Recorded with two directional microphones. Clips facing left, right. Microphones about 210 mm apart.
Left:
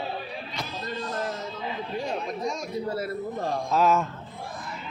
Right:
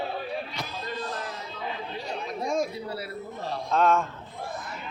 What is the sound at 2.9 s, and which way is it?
Speech, 45° left (ahead or behind).